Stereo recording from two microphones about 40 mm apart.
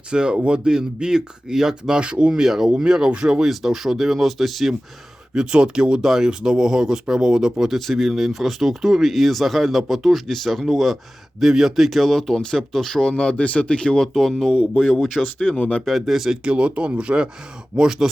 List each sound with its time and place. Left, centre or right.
0.1 s speech: right
2.4 s speech: centre
5.3 s speech: right
7.7 s speech: centre
11.9 s speech: centre
13.0 s speech: left
14.0 s speech: centre
16.4 s speech: right
17.7 s speech: centre